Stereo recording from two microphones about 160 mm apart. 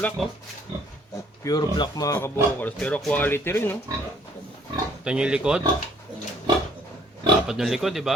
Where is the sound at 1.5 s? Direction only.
25° left (ahead or behind).